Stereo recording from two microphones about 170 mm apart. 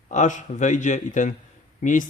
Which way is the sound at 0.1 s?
45° left (ahead or behind).